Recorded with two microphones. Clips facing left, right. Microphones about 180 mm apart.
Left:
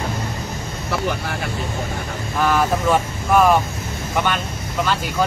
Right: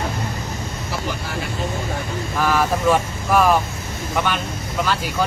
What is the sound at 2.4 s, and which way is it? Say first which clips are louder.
Speech: even; centre (ahead or behind).